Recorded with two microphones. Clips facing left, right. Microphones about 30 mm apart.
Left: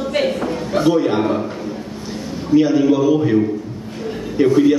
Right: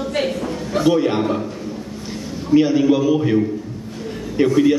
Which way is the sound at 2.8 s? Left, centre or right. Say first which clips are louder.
Left 2 dB; centre.